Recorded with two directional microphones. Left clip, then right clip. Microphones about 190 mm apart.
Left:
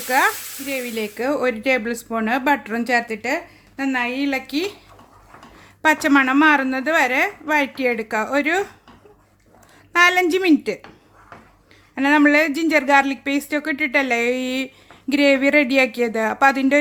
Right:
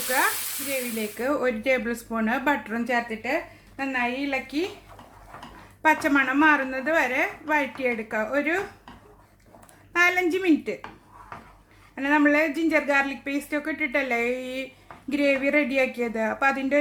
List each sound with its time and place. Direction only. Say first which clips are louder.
0.7 s a woman's voice: left 5 dB; 40° left (ahead or behind); by 4.7 s 60° left (ahead or behind)
5.8 s a woman's voice: left 5 dB; 45° left (ahead or behind)
9.9 s a woman's voice: left 6 dB; 45° left (ahead or behind)
11.9 s a woman's voice: left 6 dB; 45° left (ahead or behind)